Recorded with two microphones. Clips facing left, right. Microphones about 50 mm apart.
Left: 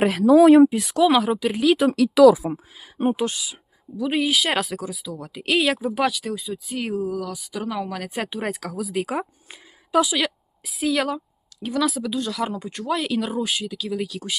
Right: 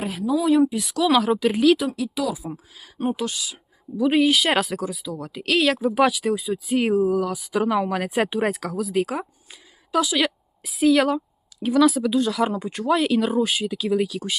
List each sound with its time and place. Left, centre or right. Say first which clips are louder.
0.0 s speech: left 9 dB; left
0.6 s speech: left 5 dB; left
1.0 s speech: even; centre
1.9 s speech: left 13 dB; left
2.7 s speech: left 2 dB; centre
3.9 s speech: right 4 dB; centre
6.3 s speech: right 6 dB; centre
8.2 s speech: right 5 dB; centre
8.5 s speech: right 3 dB; centre
10.2 s speech: right 2 dB; centre
13.7 s speech: right 5 dB; centre